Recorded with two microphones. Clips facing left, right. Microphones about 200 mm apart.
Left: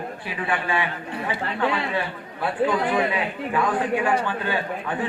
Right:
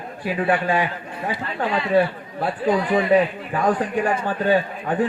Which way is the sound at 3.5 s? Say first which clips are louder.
Right 1 dB; 40° right (ahead or behind).